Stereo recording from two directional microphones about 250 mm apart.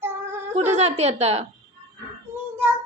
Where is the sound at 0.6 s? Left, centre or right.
Right.